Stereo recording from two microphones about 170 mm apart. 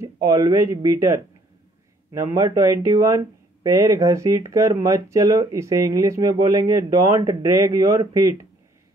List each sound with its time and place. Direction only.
0.0 s speech: 20° right (ahead or behind)